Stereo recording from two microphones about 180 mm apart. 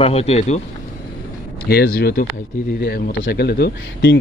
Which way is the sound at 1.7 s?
60° left (ahead or behind).